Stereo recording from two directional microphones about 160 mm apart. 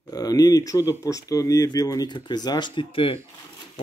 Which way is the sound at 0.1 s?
25° left (ahead or behind).